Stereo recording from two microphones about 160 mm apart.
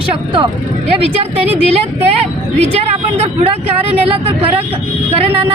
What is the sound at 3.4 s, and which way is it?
Speech, 40° right (ahead or behind).